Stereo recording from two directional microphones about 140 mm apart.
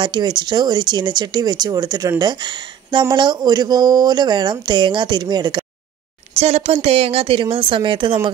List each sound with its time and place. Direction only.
0.0 s speech: 35° right (ahead or behind)
6.3 s speech: 45° right (ahead or behind)